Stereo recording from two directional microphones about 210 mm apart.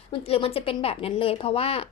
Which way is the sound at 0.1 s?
25° left (ahead or behind).